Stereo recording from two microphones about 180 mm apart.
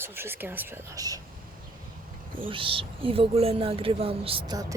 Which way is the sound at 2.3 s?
30° right (ahead or behind).